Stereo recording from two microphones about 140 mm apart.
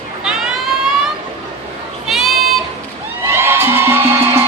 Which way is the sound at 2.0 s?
Centre (ahead or behind).